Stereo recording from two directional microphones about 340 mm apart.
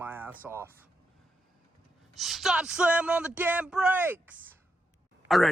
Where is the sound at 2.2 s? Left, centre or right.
Centre.